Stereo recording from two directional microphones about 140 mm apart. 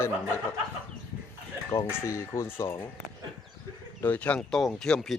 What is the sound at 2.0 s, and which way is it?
Speech, 20° left (ahead or behind).